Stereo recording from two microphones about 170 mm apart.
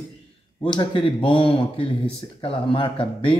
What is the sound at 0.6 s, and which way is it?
Speech, 25° left (ahead or behind).